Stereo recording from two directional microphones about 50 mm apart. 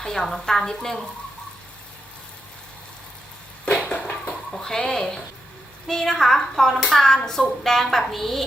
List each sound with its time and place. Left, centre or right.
0.0 s a woman's voice: centre
3.9 s a sound: left
4.5 s a woman's voice: centre